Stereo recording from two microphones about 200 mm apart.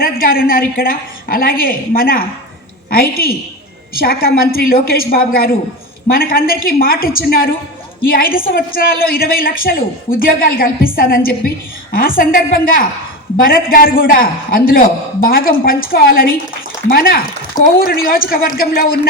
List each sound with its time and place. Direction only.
0.0 s a woman's voice: 45° left (ahead or behind)